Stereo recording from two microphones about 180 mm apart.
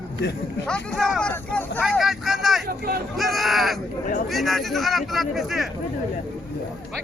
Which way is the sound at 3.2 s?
Centre (ahead or behind).